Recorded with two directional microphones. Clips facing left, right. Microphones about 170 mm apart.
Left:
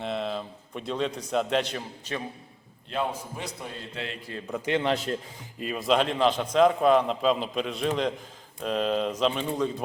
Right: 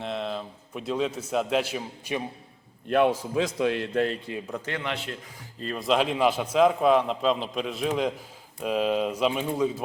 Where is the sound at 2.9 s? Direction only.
80° right.